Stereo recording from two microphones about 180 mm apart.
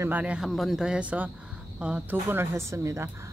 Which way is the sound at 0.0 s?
10° right (ahead or behind).